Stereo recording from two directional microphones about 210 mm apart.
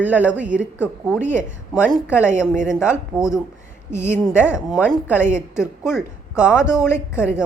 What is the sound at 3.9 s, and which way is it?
Speech, 10° left (ahead or behind).